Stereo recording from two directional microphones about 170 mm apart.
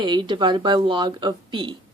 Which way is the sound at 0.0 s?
30° right (ahead or behind).